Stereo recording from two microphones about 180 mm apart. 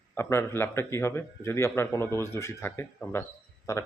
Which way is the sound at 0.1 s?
15° left (ahead or behind).